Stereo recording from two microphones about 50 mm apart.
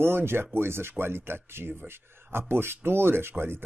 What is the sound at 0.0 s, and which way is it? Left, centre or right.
Speech, right.